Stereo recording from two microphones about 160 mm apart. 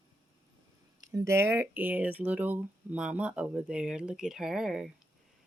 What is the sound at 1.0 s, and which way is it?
Speech, 20° right (ahead or behind).